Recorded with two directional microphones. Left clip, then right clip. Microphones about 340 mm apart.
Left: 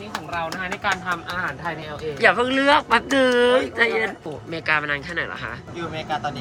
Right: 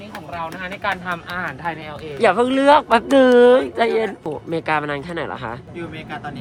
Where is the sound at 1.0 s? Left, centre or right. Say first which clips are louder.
Even; right.